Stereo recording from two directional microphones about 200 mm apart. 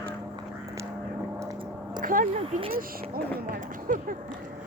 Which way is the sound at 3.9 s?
45° right (ahead or behind).